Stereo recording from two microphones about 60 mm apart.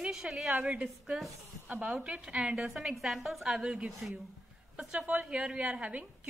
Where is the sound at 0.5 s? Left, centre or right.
Centre.